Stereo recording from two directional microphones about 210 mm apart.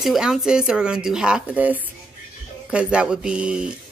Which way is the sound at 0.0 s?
Centre (ahead or behind).